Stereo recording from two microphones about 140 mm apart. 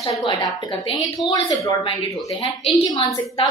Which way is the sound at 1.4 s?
40° left (ahead or behind).